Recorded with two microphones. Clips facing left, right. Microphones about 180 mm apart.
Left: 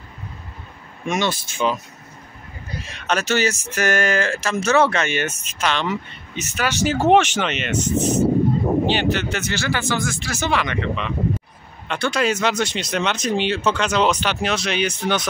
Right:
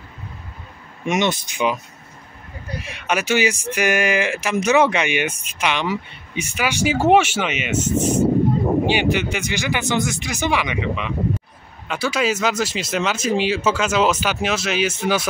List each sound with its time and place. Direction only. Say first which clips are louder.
1.0 s speech: right 2 dB; 20° right (ahead or behind)
2.8 s speech: even; 10° right (ahead or behind)